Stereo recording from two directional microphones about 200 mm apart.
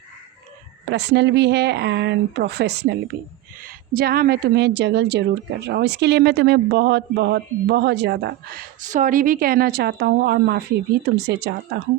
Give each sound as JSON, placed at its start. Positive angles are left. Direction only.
{"t": 0.9, "sound": "speech", "side_deg": -60}
{"t": 3.6, "sound": "a woman's voice", "side_deg": -45}